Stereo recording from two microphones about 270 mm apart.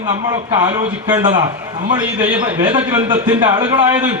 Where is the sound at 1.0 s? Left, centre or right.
Centre.